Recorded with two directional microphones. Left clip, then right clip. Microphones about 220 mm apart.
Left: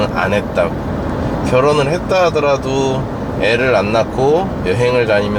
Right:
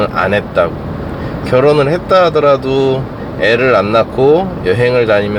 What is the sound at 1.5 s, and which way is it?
Speech, 35° right (ahead or behind).